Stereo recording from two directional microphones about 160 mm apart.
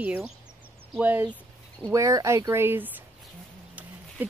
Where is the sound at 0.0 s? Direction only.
10° right (ahead or behind).